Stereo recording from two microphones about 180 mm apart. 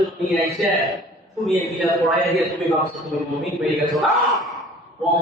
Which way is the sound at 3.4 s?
Centre (ahead or behind).